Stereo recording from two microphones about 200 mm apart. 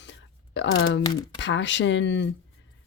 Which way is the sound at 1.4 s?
65° left (ahead or behind).